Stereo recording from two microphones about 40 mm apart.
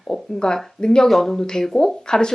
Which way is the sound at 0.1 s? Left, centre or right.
Centre.